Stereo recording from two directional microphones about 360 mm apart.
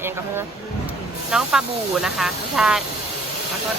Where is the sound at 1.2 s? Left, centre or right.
Centre.